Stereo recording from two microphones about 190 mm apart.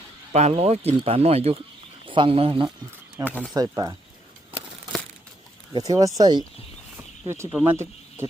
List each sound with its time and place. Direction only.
0.3 s speech: 35° right (ahead or behind)
3.2 s speech: 10° left (ahead or behind)
3.5 s speech: 20° right (ahead or behind)
5.7 s speech: 20° right (ahead or behind)
7.5 s speech: 10° right (ahead or behind)